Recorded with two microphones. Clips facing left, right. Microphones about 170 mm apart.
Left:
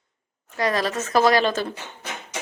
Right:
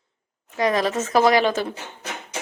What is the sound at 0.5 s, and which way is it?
A woman's voice, 15° right (ahead or behind).